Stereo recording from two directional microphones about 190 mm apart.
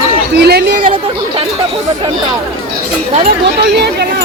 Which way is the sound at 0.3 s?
55° right (ahead or behind).